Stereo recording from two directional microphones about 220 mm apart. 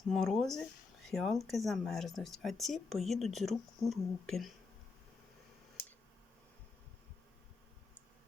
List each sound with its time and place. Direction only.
0.1 s speech: centre (ahead or behind)